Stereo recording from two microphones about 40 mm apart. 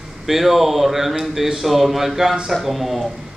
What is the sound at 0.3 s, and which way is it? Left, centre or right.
Speech, centre.